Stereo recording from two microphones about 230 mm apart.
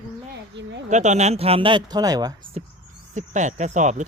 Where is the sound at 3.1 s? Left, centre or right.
Right.